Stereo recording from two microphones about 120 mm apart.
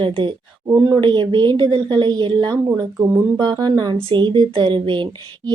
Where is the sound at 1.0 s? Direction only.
40° right (ahead or behind).